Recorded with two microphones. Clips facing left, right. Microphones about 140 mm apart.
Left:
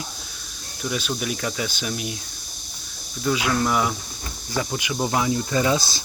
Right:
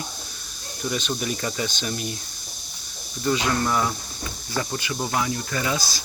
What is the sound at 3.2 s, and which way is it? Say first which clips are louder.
Speech: left 1 dB; 5° left (ahead or behind).